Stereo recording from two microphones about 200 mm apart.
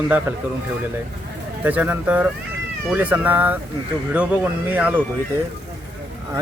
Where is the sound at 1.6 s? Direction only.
10° right (ahead or behind).